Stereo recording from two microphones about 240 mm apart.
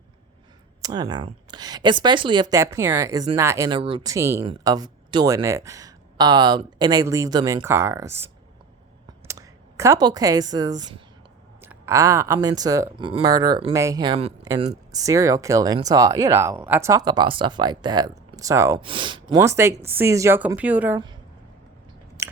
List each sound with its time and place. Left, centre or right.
0.8 s speech: centre
9.2 s speech: centre
22.2 s biting: centre